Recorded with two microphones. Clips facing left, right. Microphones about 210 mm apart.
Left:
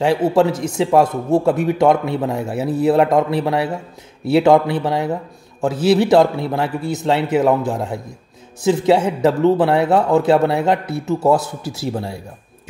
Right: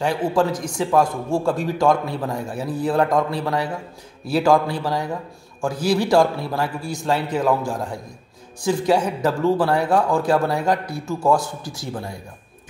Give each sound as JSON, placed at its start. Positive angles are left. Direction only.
{"t": 0.0, "sound": "a man's voice", "side_deg": 25}